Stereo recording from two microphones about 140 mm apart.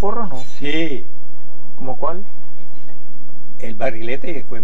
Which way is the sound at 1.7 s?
30° right (ahead or behind).